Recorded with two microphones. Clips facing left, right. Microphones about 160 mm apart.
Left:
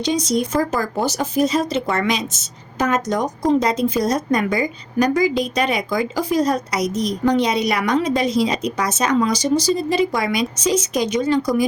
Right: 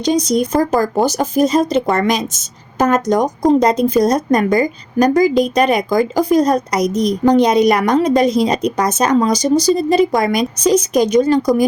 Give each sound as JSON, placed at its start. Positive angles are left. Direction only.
{"t": 0.3, "sound": "a woman's voice", "side_deg": -40}